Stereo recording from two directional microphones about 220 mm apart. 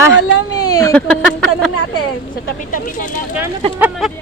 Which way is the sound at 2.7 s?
40° left (ahead or behind).